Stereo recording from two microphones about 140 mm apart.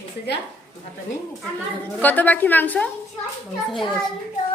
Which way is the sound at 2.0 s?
10° left (ahead or behind).